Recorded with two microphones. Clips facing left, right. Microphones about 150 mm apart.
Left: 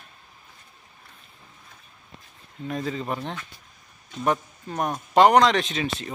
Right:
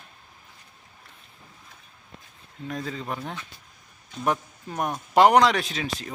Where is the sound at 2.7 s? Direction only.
Centre (ahead or behind).